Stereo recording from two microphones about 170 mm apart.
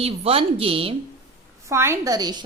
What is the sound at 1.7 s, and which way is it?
Speech, 15° right (ahead or behind).